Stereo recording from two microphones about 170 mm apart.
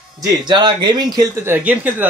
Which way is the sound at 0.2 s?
25° right (ahead or behind).